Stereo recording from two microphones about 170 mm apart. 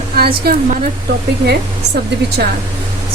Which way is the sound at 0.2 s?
65° right (ahead or behind).